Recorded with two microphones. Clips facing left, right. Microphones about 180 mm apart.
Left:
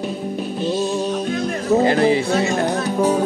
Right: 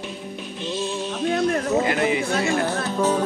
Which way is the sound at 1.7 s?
35° left (ahead or behind).